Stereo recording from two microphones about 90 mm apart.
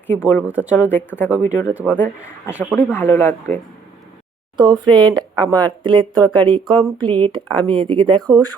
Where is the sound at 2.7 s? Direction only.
25° left (ahead or behind).